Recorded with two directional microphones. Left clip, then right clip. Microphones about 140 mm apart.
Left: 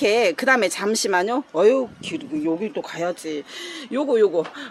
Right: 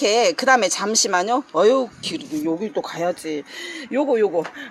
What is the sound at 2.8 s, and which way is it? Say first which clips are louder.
Speech: right 2 dB; 20° right (ahead or behind).